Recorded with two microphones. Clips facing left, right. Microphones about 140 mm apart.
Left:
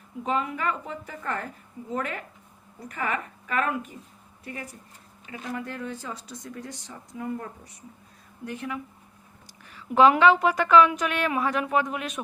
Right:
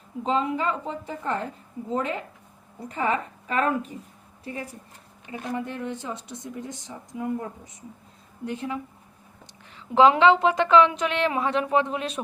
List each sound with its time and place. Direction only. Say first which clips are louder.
0.2 s a woman's voice: right 3 dB; 25° right (ahead or behind)